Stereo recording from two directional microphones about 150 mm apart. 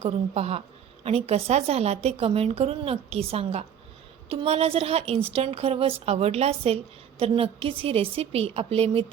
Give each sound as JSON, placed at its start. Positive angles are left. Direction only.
{"t": 0.0, "sound": "a woman's voice", "side_deg": -45}